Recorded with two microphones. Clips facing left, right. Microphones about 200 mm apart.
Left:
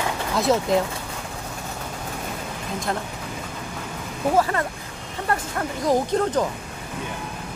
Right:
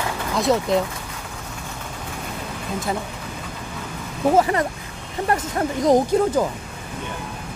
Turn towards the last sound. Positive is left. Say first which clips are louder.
# right 3 dB
turn(degrees=-10)  # may be behind; listen again after turning